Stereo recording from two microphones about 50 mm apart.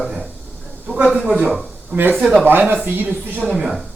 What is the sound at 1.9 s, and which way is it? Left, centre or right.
Speech, right.